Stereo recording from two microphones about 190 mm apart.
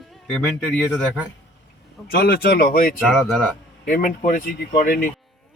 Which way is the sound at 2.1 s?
50° left (ahead or behind).